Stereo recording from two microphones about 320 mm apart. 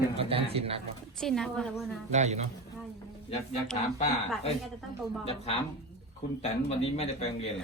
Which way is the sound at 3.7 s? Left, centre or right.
Centre.